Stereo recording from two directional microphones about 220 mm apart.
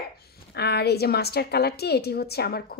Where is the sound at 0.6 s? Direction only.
50° left (ahead or behind).